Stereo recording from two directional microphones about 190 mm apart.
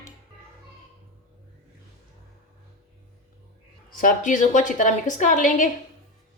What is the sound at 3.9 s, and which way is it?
A woman's voice, 45° left (ahead or behind).